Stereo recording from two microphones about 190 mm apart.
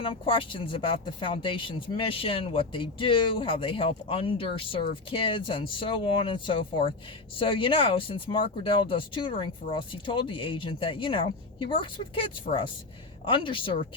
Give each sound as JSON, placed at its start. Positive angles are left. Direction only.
{"t": 0.0, "sound": "speech", "side_deg": 25}